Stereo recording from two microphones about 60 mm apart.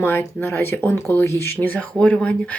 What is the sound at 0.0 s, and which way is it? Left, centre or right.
Speech, left.